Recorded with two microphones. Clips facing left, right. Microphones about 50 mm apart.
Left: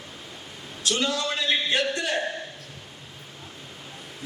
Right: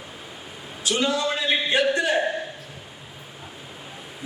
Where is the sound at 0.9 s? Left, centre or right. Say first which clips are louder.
Right 3 dB; centre.